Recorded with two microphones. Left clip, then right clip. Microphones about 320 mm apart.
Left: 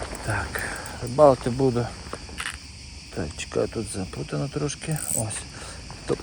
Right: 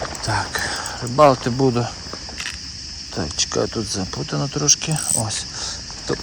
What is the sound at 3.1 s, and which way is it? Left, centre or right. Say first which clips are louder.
Speech: right 5 dB; centre.